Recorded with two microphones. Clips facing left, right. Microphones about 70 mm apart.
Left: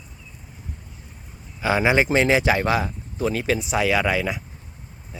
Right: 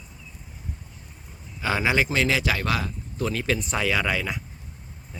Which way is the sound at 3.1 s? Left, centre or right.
Centre.